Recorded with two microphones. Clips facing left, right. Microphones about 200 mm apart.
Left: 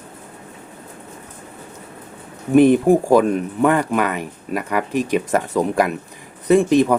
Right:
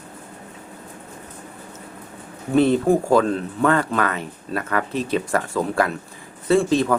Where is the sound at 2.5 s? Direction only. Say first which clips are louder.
Left 4 dB; 15° left (ahead or behind).